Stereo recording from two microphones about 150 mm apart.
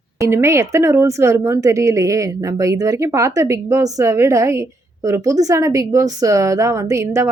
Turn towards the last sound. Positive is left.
turn(degrees=-20)  # may be behind; listen again after turning